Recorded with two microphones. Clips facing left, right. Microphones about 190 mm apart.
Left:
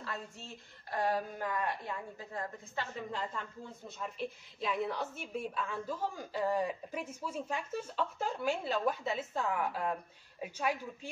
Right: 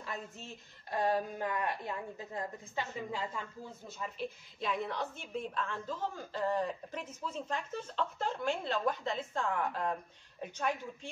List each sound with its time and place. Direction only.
0.0 s a woman's voice: 20° right (ahead or behind); by 11.1 s 5° left (ahead or behind)